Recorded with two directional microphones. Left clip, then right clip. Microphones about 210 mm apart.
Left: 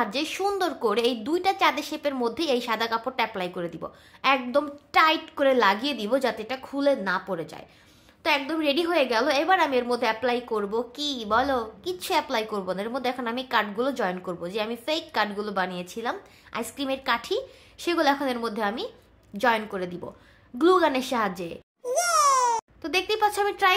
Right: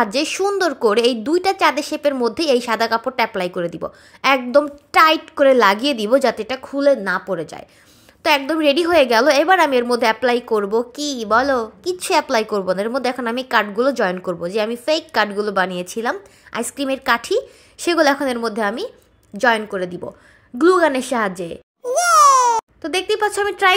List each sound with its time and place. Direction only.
0.0 s a woman's voice: 25° right (ahead or behind)